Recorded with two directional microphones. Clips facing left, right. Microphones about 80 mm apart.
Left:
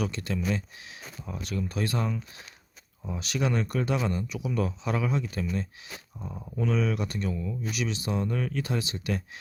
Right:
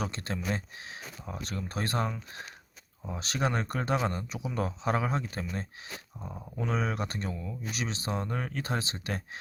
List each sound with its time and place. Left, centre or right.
0.0 s speech: right
6.1 s speech: centre
6.6 s speech: right